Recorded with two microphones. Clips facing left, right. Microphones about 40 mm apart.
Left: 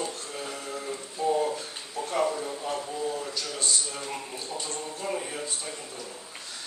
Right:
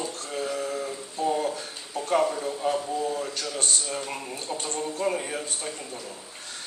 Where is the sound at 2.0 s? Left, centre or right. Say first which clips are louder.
Right 2 dB; right.